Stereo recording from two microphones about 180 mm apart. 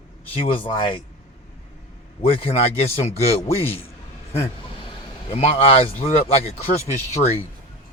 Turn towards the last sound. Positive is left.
turn(degrees=35)  # may be behind; listen again after turning